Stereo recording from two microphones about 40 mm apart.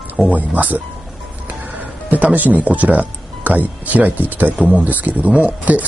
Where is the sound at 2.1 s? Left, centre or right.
Right.